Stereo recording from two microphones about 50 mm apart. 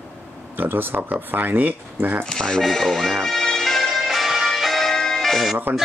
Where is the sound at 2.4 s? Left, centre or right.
Centre.